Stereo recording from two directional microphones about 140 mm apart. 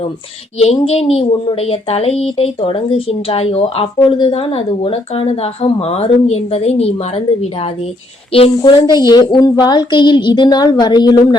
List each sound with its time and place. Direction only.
0.6 s a woman's voice: 45° left (ahead or behind)
8.3 s a woman's voice: 40° left (ahead or behind)